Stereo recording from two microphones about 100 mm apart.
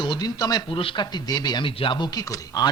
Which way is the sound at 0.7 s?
60° left (ahead or behind).